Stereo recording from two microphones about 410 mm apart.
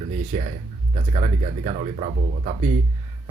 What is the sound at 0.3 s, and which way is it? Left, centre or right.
Speech, centre.